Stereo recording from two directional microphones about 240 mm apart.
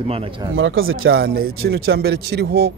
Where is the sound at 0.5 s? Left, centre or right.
Right.